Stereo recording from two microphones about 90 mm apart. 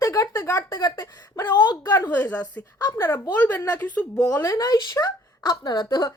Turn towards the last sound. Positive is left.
turn(degrees=45)  # may be behind; listen again after turning